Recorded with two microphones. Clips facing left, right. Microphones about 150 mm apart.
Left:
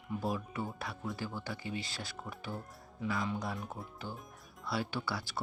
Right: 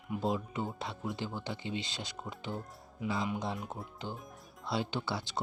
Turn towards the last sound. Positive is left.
turn(degrees=-20)  # may be behind; listen again after turning